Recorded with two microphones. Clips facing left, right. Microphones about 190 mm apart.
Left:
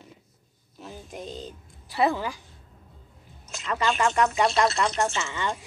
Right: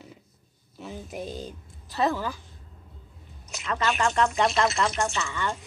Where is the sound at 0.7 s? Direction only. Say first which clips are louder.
Right 3 dB; centre (ahead or behind).